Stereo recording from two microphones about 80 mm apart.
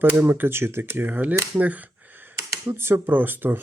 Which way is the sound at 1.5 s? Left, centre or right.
Centre.